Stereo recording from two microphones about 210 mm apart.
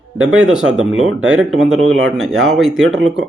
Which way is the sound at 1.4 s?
70° right (ahead or behind).